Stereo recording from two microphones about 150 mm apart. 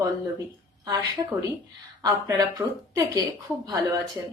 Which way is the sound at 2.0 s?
25° right (ahead or behind).